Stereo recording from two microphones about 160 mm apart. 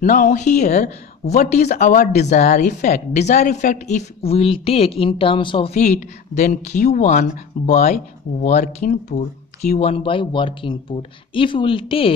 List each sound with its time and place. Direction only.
0.0 s a woman's voice: 55° left (ahead or behind); by 12.1 s 35° left (ahead or behind)